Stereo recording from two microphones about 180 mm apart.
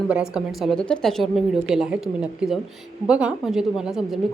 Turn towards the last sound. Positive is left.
turn(degrees=0)  # may be behind; listen again after turning